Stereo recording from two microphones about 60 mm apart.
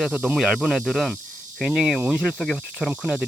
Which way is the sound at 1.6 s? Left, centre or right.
Centre.